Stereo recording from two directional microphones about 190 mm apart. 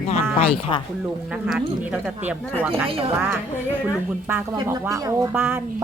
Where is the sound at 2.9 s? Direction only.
30° right (ahead or behind).